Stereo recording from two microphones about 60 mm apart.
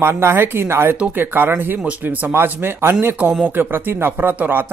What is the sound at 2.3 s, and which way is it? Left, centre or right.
Speech, right.